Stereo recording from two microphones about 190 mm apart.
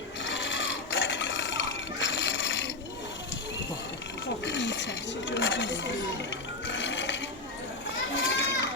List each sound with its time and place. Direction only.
0.3 s a sound: 75° left (ahead or behind)
4.4 s roaring cats: 70° left (ahead or behind)
6.7 s sewing machine: 75° left (ahead or behind)
8.1 s children playing: 70° left (ahead or behind)